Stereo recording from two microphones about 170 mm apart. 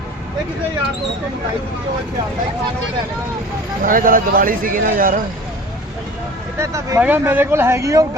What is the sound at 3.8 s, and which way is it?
Speech, 55° right (ahead or behind).